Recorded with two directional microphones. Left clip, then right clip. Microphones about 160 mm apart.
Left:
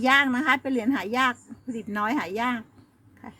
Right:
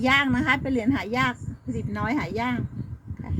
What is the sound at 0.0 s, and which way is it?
A woman's voice, 20° left (ahead or behind).